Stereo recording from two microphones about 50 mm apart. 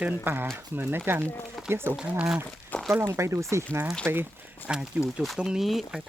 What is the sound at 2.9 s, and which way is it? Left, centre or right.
Speech, right.